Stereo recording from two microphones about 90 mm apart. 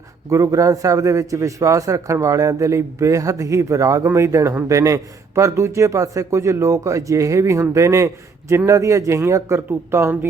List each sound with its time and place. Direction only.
0.3 s a man's voice: 35° right (ahead or behind)